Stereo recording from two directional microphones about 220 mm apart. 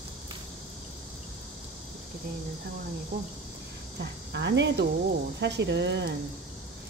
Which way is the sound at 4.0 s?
50° right (ahead or behind).